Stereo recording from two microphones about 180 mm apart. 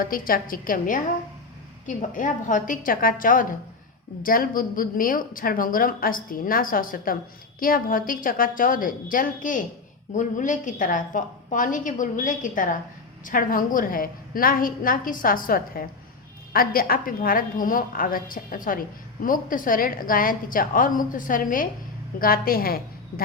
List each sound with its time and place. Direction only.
0.0 s a woman's voice: 55° left (ahead or behind)